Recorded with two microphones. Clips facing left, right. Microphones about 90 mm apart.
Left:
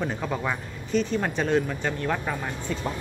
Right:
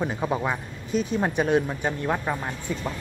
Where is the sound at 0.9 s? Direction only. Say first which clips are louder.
Even; 10° right (ahead or behind).